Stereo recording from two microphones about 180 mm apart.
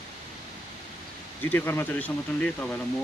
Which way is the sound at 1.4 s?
10° left (ahead or behind).